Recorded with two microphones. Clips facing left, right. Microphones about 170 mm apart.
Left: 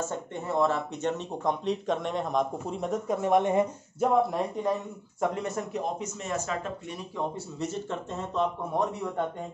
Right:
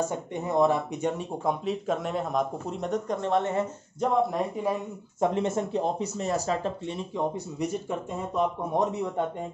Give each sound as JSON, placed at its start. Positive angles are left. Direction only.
{"t": 0.0, "sound": "speech", "side_deg": -15}
{"t": 4.6, "sound": "speech", "side_deg": -5}
{"t": 5.2, "sound": "speech", "side_deg": -25}
{"t": 7.2, "sound": "speech", "side_deg": -15}